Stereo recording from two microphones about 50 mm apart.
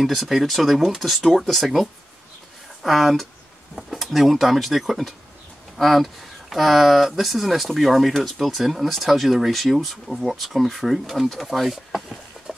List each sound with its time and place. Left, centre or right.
0.0 s speech: centre